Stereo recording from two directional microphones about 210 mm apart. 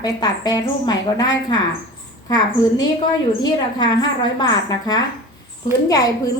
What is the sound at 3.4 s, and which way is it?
A woman's voice, 20° left (ahead or behind).